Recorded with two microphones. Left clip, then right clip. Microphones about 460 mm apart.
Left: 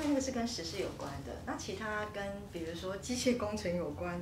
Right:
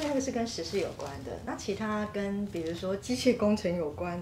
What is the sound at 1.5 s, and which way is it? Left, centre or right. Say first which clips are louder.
A woman's voice: right 5 dB; right.